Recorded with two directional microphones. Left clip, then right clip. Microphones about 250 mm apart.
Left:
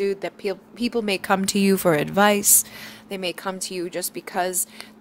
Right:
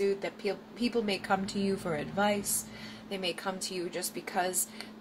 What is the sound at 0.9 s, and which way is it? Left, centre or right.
A woman's voice, left.